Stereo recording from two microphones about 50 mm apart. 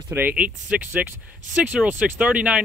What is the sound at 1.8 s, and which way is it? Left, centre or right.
Speech, right.